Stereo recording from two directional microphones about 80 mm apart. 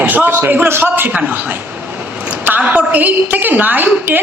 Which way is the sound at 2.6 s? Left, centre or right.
Right.